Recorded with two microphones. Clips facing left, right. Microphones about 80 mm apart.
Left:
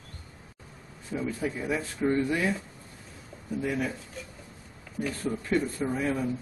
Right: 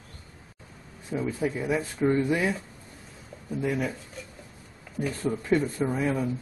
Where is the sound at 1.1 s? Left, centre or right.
Centre.